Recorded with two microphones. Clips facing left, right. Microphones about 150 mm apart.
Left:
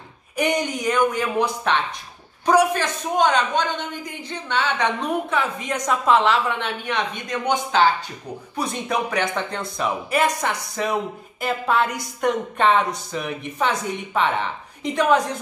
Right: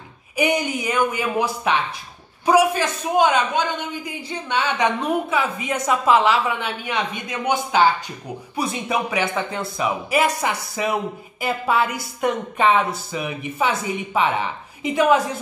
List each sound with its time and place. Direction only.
0.4 s a man's voice: 5° right (ahead or behind)